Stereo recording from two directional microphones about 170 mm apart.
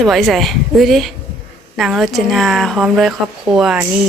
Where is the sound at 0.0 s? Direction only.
Centre (ahead or behind).